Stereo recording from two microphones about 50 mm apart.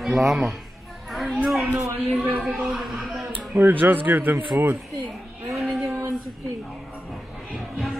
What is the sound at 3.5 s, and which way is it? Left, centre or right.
Speech, right.